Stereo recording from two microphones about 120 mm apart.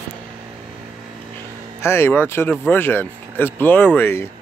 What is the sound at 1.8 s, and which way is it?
Speech, 20° left (ahead or behind).